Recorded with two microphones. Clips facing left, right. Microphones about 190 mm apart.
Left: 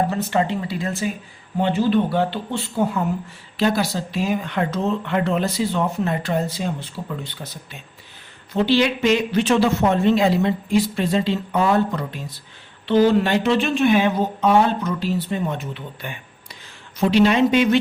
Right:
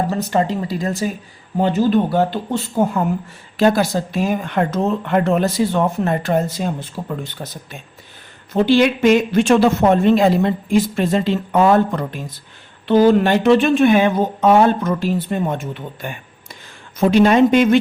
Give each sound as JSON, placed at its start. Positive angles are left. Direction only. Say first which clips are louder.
{"t": 0.1, "sound": "speech", "louder": "right 3 dB", "side_deg": -40}